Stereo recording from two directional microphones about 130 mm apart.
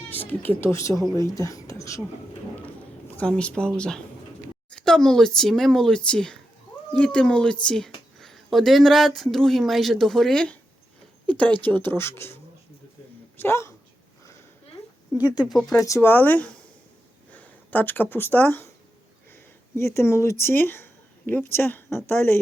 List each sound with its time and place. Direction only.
0.1 s speech: 15° left (ahead or behind)
3.2 s speech: 10° left (ahead or behind)
13.4 s speech: 20° left (ahead or behind)
15.4 s speech: centre (ahead or behind)
15.7 s speech: 25° left (ahead or behind)